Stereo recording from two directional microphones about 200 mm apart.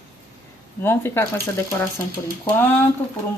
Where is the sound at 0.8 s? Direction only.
10° left (ahead or behind).